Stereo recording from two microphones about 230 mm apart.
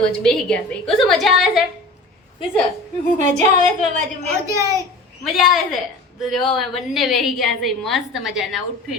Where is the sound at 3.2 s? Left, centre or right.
Right.